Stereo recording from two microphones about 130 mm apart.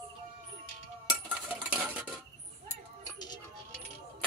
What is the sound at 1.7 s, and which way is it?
Cutlery, 10° right (ahead or behind).